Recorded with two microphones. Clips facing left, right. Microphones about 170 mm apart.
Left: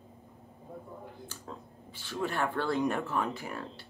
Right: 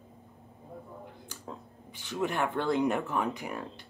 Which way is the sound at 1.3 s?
15° right (ahead or behind).